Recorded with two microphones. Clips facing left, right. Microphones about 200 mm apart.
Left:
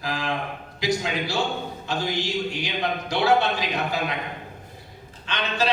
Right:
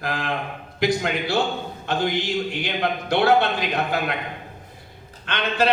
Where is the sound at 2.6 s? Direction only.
55° right (ahead or behind).